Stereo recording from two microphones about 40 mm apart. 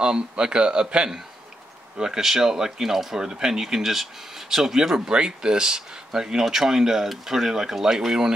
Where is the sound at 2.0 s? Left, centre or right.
Centre.